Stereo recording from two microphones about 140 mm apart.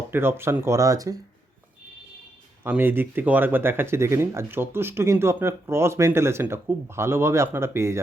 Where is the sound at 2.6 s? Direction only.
15° right (ahead or behind).